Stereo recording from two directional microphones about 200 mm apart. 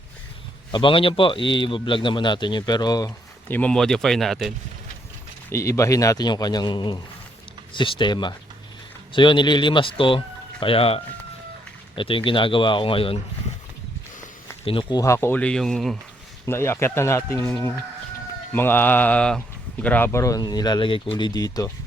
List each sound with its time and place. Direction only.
0.7 s a man's voice: 25° left (ahead or behind)
3.5 s speech: 5° left (ahead or behind)
5.5 s a man's voice: 15° left (ahead or behind)
14.6 s speech: 25° left (ahead or behind); by 16.0 s centre (ahead or behind)
16.5 s a man's voice: 10° left (ahead or behind)